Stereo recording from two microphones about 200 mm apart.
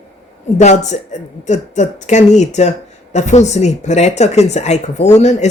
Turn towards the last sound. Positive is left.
turn(degrees=35)  # may be behind; listen again after turning